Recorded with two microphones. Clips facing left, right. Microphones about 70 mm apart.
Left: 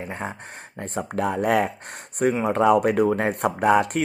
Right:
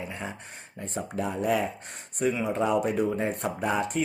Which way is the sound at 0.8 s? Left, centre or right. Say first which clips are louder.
Left 6 dB; left.